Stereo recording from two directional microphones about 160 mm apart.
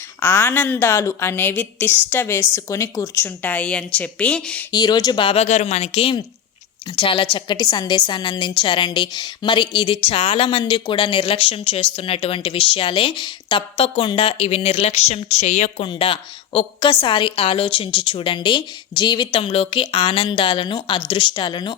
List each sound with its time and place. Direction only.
0.2 s a woman's voice: 15° left (ahead or behind)
4.7 s a woman's voice: 25° left (ahead or behind); by 15.7 s 45° left (ahead or behind)
15.8 s a woman's voice: 35° left (ahead or behind)